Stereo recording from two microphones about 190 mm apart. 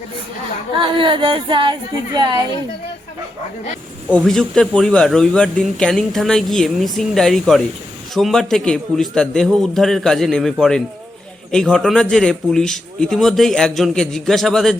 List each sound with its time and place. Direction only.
0.8 s speech: 25° right (ahead or behind)
4.1 s speech: 5° left (ahead or behind)